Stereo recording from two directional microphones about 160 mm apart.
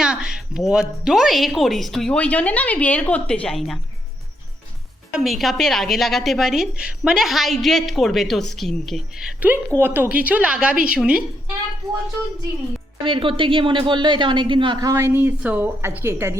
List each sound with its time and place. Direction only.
0.0 s a woman's voice: 5° right (ahead or behind)
5.2 s a woman's voice: centre (ahead or behind)
13.1 s speech: 35° right (ahead or behind); by 16.4 s 15° right (ahead or behind)